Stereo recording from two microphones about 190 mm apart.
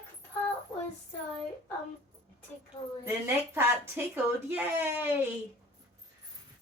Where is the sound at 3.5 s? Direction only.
10° right (ahead or behind).